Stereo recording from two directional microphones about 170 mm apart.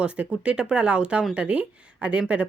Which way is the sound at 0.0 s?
5° right (ahead or behind).